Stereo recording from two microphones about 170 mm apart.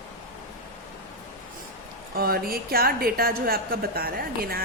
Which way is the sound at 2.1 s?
60° right (ahead or behind).